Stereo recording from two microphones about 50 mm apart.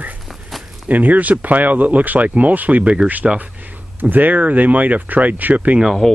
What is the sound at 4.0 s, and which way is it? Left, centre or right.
Speech, right.